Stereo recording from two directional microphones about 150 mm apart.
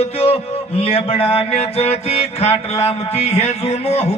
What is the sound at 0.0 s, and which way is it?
Speech, 45° left (ahead or behind).